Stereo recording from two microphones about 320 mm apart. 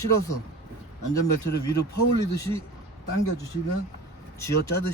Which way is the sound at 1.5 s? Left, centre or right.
Left.